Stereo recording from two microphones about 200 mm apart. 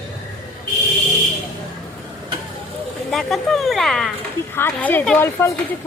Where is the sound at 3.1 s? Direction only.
Centre (ahead or behind).